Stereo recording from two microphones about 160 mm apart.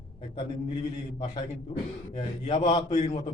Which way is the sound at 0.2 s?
45° left (ahead or behind).